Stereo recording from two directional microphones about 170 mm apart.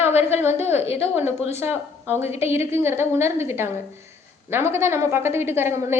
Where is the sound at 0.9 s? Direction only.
15° right (ahead or behind).